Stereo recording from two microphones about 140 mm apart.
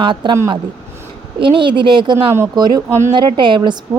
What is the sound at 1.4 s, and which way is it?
A woman's voice, 35° right (ahead or behind).